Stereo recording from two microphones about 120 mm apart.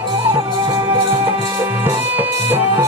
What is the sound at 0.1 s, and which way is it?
Music, 30° right (ahead or behind).